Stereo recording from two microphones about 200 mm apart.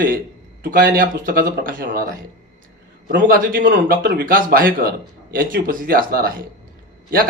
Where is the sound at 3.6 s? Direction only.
60° right (ahead or behind).